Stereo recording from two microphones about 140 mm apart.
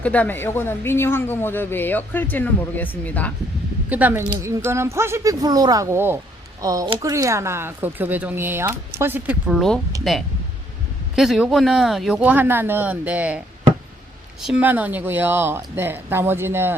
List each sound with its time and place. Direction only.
0.0 s speech: 10° left (ahead or behind)
3.8 s speech: 10° right (ahead or behind)
9.6 s speech: 5° left (ahead or behind)
14.4 s speech: 10° right (ahead or behind)